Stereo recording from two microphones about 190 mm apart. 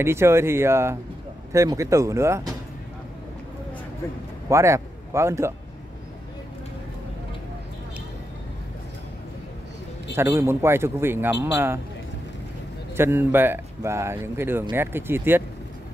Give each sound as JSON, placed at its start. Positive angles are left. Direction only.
{"t": 0.0, "sound": "speech", "side_deg": -15}
{"t": 4.5, "sound": "speech", "side_deg": -15}
{"t": 10.1, "sound": "speech", "side_deg": -15}
{"t": 12.9, "sound": "speech", "side_deg": -10}